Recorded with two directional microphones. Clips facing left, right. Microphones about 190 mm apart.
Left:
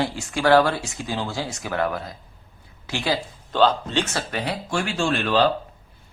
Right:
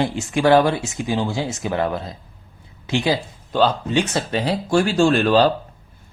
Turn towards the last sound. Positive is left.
turn(degrees=-40)  # may be behind; listen again after turning